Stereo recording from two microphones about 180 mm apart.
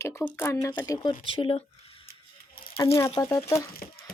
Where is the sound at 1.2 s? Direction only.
30° left (ahead or behind).